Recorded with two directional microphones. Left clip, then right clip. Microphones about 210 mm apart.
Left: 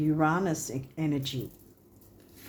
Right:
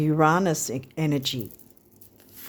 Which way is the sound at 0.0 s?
55° right (ahead or behind).